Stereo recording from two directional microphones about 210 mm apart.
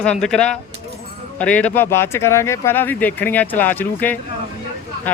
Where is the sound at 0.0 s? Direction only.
5° left (ahead or behind).